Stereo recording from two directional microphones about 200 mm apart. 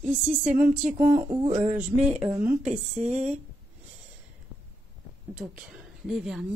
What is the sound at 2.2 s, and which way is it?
Speech, 10° right (ahead or behind).